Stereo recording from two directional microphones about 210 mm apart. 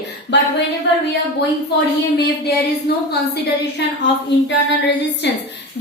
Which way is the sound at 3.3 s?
55° left (ahead or behind).